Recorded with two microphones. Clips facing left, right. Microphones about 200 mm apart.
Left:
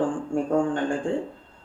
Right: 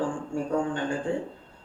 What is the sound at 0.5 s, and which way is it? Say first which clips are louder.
Speech: left 4 dB; 45° left (ahead or behind).